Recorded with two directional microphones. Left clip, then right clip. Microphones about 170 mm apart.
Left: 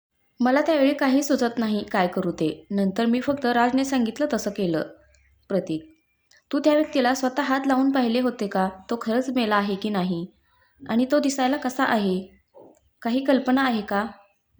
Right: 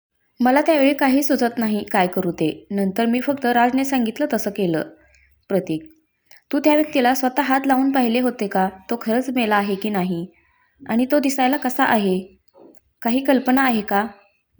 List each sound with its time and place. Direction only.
0.3 s a woman's voice: 15° right (ahead or behind)
6.2 s a sound: 15° right (ahead or behind)
6.9 s a woman's voice: 15° right (ahead or behind)